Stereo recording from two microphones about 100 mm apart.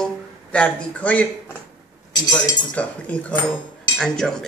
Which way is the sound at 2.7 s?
15° left (ahead or behind).